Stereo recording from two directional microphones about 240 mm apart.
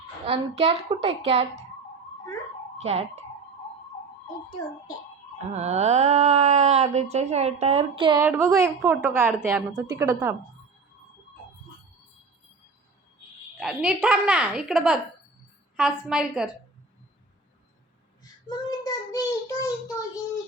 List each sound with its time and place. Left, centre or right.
0.3 s speech: right
2.7 s speech: right
5.5 s speech: right
8.2 s a woman's voice: centre
13.6 s a woman's voice: centre
18.2 s child singing: centre